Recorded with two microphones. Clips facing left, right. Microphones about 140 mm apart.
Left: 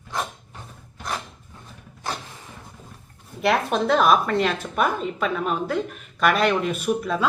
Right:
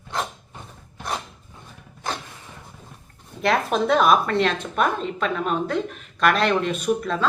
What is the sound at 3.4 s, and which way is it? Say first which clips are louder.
A woman's voice: even; centre (ahead or behind).